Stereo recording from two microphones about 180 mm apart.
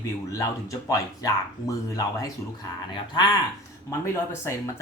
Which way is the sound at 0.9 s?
20° left (ahead or behind).